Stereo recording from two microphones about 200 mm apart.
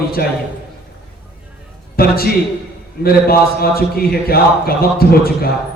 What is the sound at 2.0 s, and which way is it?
A man's voice, 50° left (ahead or behind).